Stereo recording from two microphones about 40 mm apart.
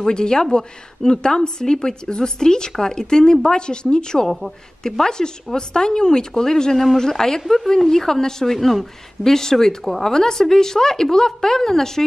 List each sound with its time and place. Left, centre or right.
0.0 s a woman's voice: centre
8.5 s speech: centre